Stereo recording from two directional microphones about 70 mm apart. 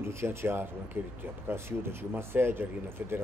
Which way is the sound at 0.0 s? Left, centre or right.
Right.